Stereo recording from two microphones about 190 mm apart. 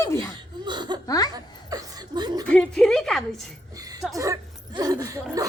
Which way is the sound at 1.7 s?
20° right (ahead or behind).